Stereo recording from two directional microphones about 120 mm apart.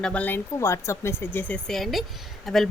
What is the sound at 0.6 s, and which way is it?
Speech, 25° left (ahead or behind).